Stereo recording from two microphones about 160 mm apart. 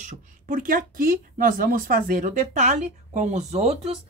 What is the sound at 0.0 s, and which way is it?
A woman's voice, 55° right (ahead or behind).